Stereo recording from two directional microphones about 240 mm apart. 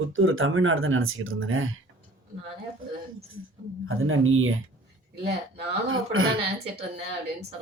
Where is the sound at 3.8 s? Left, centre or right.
Right.